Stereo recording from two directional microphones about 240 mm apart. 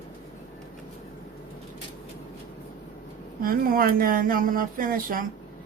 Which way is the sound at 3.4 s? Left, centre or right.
Right.